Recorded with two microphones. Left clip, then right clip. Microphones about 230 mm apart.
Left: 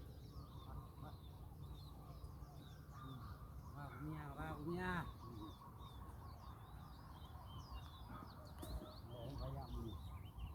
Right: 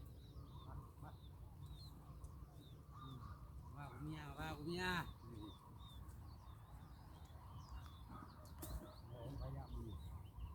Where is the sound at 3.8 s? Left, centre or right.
Right.